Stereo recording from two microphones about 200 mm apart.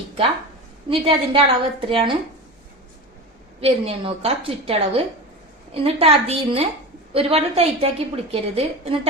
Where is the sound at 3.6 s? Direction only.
30° right (ahead or behind).